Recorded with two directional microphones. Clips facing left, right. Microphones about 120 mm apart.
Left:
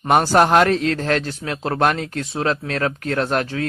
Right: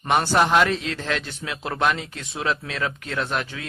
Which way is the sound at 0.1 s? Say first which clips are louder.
Left 5 dB; 45° left (ahead or behind).